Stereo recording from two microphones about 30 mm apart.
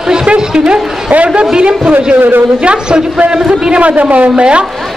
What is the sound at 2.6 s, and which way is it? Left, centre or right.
Speech, right.